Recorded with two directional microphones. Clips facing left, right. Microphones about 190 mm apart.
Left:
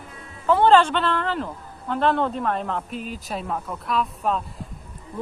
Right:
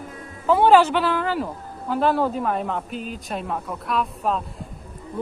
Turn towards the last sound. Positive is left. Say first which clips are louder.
# even
turn(degrees=0)  # may be behind; listen again after turning